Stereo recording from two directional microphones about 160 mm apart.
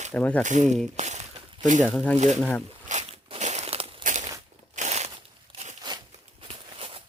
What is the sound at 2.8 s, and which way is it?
Crumpling, 45° right (ahead or behind).